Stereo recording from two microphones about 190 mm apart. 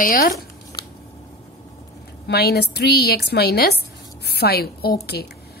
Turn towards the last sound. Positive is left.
turn(degrees=55)  # may be behind; listen again after turning